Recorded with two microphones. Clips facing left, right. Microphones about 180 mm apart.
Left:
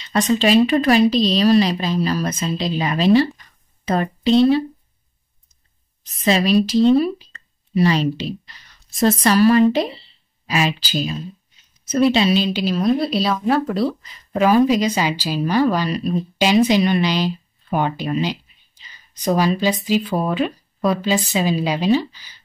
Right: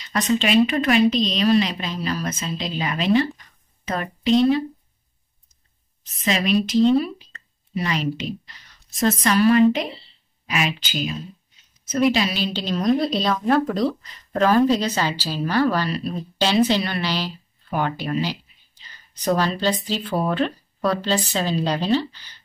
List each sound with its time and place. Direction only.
0.0 s speech: 30° left (ahead or behind)
6.2 s a woman's voice: 35° left (ahead or behind)
12.5 s speech: 5° left (ahead or behind)